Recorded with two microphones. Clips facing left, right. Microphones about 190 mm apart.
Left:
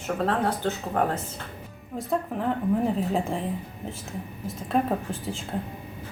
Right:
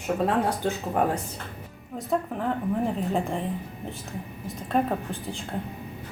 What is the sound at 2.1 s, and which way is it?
A woman's voice, centre (ahead or behind).